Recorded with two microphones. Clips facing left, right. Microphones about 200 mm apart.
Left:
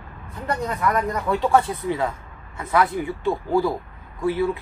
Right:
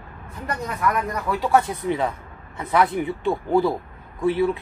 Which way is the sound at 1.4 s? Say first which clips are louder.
Right 1 dB; 10° right (ahead or behind).